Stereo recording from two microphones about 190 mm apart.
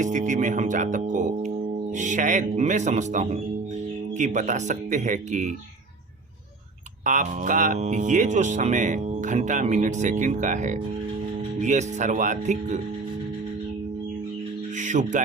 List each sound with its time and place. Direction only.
0.0 s speech: 40° right (ahead or behind)
7.0 s speech: 40° right (ahead or behind)
14.8 s speech: 40° right (ahead or behind)